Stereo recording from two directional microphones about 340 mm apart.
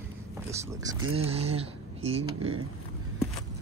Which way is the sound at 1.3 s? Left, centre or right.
Centre.